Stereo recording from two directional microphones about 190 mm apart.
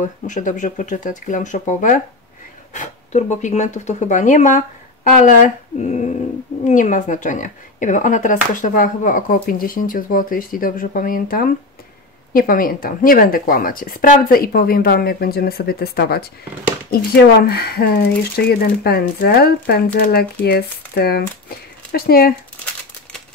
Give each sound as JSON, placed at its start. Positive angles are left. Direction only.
{"t": 0.0, "sound": "speech", "side_deg": 40}